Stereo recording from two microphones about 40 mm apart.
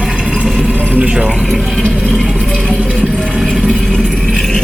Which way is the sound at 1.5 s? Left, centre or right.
Centre.